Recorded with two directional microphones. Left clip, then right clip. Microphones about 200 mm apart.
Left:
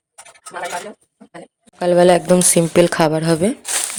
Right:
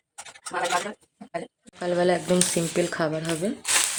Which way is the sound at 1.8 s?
25° left (ahead or behind).